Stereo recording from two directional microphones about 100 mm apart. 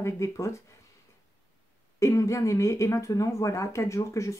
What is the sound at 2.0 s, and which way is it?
Speech, 30° left (ahead or behind).